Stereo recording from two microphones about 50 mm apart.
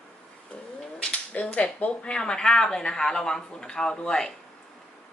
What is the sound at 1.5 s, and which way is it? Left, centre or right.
A woman's voice, left.